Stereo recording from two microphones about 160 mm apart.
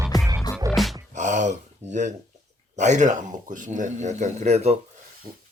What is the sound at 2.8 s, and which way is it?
Speech, 50° right (ahead or behind).